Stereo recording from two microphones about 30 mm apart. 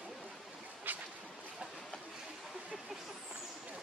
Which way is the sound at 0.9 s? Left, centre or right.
Right.